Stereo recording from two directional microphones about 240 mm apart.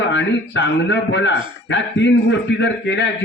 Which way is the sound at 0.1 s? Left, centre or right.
Left.